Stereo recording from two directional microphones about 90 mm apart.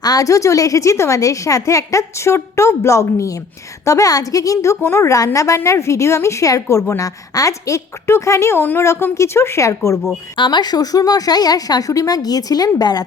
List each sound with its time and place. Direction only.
0.0 s a woman's voice: 45° left (ahead or behind)
10.3 s a woman's voice: 60° left (ahead or behind)